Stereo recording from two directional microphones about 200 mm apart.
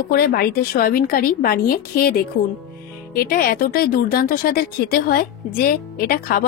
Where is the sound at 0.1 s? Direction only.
50° left (ahead or behind).